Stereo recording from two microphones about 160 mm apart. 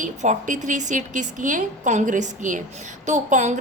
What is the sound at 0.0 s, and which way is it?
A woman's voice, 50° right (ahead or behind).